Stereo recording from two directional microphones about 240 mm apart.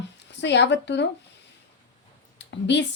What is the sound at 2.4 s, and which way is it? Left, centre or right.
Speech, left.